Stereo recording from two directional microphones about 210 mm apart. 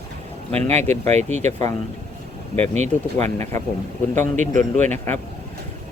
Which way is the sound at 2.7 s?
35° right (ahead or behind).